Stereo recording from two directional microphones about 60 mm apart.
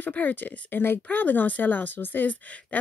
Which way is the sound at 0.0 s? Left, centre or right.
Left.